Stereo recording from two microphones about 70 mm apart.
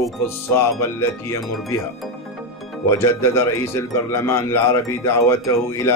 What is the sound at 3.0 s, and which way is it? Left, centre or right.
Speech, left.